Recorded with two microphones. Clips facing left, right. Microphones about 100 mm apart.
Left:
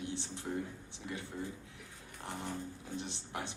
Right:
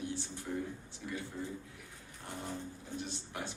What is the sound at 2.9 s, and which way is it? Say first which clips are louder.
Speech: even; 20° left (ahead or behind).